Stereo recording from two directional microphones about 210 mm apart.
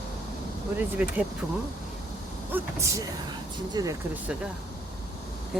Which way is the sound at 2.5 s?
10° right (ahead or behind).